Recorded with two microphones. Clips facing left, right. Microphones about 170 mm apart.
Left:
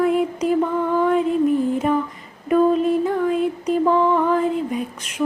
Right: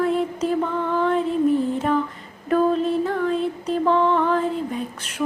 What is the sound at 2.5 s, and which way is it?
Mantra, 5° left (ahead or behind).